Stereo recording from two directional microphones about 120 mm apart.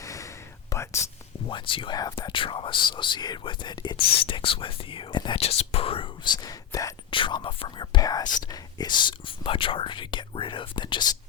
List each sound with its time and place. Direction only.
0.0 s whispering: 25° left (ahead or behind)
1.5 s speech: 45° left (ahead or behind)
5.4 s speech: 60° left (ahead or behind); by 6.9 s 30° left (ahead or behind)
7.1 s speech: 45° left (ahead or behind)